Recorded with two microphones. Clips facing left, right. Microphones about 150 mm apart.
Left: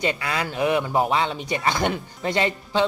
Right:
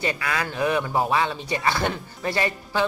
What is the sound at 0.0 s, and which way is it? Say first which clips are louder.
A man's voice: left 1 dB; 25° left (ahead or behind).